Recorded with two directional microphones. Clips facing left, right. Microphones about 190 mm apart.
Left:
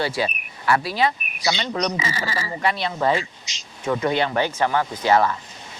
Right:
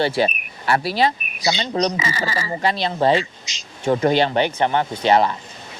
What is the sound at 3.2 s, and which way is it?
Speech, 90° right.